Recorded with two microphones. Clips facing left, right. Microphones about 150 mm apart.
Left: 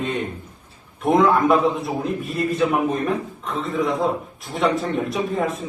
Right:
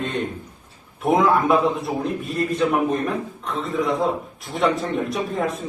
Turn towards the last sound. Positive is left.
turn(degrees=0)  # may be behind; listen again after turning